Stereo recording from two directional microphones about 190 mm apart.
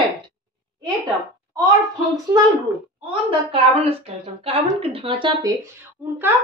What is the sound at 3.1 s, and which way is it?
Speech, 25° right (ahead or behind).